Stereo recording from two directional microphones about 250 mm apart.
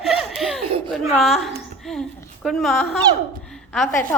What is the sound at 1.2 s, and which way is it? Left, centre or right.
A woman's voice, centre.